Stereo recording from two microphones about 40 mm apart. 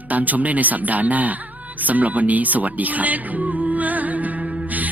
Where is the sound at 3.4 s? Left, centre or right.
Right.